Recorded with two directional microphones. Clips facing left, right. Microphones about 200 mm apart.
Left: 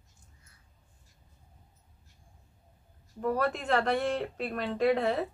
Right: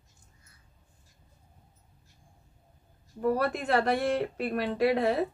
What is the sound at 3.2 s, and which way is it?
Speech, 10° right (ahead or behind).